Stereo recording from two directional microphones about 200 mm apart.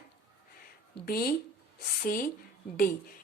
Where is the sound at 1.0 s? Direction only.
50° left (ahead or behind).